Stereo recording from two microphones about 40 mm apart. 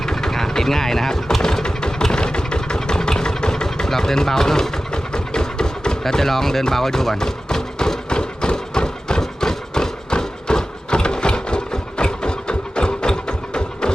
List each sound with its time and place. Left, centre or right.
0.0 s vehicle: centre
5.1 s music: centre
10.1 s a sound: centre